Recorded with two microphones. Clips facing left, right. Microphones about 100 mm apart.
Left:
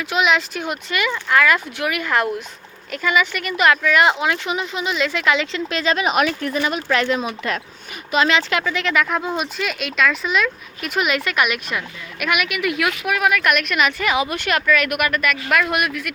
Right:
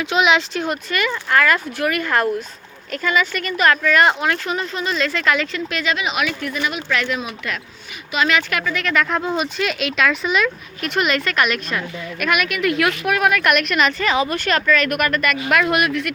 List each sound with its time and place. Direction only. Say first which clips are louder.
0.0 s speech: right 2 dB; centre (ahead or behind)
0.6 s speech: right 1 dB; 15° left (ahead or behind)